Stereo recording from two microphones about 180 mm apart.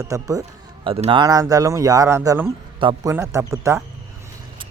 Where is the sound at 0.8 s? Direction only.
30° right (ahead or behind).